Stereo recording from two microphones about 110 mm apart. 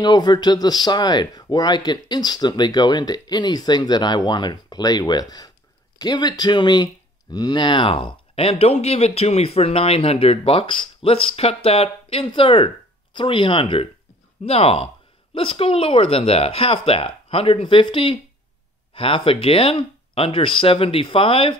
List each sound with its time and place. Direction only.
0.0 s speech: 40° left (ahead or behind); by 12.3 s 65° left (ahead or behind)
12.3 s speech: 50° left (ahead or behind)
14.4 s speech: 65° left (ahead or behind)
15.3 s speech: 55° left (ahead or behind)